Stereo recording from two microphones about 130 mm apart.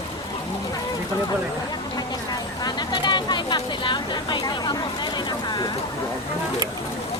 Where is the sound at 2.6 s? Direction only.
35° left (ahead or behind).